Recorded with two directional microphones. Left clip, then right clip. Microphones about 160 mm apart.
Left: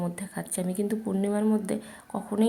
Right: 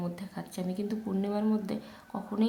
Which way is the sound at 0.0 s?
25° left (ahead or behind).